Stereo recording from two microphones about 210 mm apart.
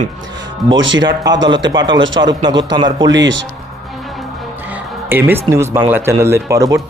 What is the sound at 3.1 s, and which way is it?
Speech, 60° right (ahead or behind).